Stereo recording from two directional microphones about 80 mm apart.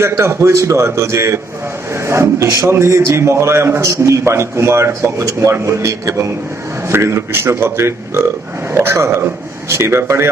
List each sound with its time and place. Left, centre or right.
0.0 s a man's voice: right